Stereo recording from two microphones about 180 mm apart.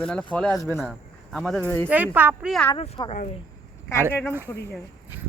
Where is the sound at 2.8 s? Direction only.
30° left (ahead or behind).